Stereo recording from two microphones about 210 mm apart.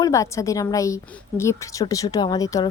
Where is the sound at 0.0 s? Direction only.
15° left (ahead or behind).